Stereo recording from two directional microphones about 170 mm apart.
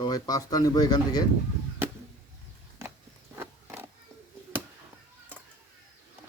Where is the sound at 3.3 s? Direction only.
15° right (ahead or behind).